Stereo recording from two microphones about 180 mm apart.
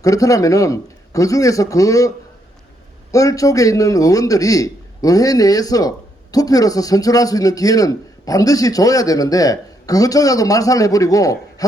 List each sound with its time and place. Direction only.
0.0 s a man's voice: 20° left (ahead or behind)